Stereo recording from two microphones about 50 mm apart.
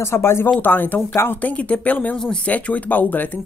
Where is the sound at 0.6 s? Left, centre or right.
Left.